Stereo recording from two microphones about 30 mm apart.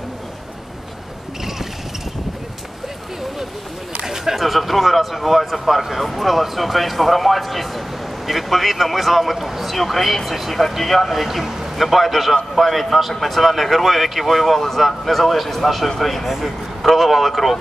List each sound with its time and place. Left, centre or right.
4.0 s a sound: centre
4.4 s speech: centre
10.8 s speech: centre
11.2 s speech: centre
11.8 s speech: centre
16.3 s speech: centre
16.8 s a man's voice: centre